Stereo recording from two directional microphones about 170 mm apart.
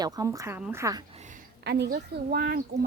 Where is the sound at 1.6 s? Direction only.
75° right (ahead or behind); by 2.6 s 60° right (ahead or behind).